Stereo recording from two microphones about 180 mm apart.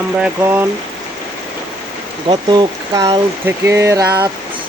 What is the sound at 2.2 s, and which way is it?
Speech, 25° right (ahead or behind).